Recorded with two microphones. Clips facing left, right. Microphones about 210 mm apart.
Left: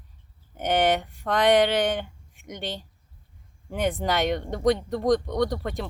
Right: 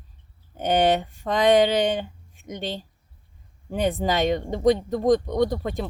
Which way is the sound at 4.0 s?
10° right (ahead or behind).